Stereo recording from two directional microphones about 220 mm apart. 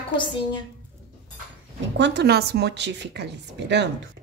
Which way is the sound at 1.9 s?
55° right (ahead or behind).